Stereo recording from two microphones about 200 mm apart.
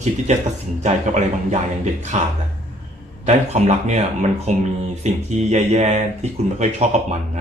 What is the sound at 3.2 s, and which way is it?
Speech, 35° right (ahead or behind).